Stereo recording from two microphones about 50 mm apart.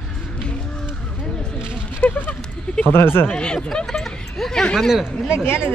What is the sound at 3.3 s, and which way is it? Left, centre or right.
Speech, centre.